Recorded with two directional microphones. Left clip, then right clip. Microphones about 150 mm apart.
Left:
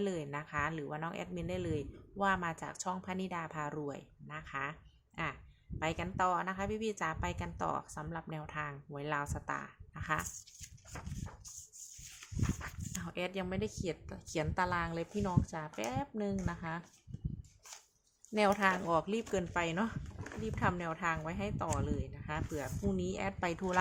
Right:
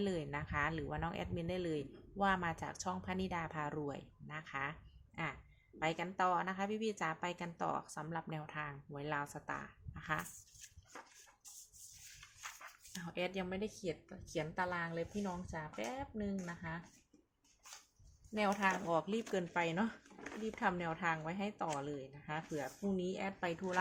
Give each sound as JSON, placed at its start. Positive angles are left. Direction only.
{"t": 0.0, "sound": "a woman's voice", "side_deg": 15}
{"t": 10.9, "sound": "a sound", "side_deg": 75}
{"t": 12.4, "sound": "dog", "side_deg": 35}
{"t": 13.1, "sound": "speech", "side_deg": 20}
{"t": 14.1, "sound": "a woman's voice", "side_deg": 45}
{"t": 18.3, "sound": "speech", "side_deg": 50}